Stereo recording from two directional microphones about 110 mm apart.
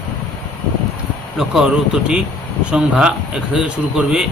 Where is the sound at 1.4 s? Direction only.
5° right (ahead or behind).